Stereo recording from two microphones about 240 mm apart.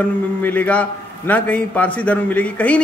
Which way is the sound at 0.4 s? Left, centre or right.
Centre.